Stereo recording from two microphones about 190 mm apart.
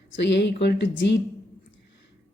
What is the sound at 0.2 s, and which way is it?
Speech, 65° left (ahead or behind).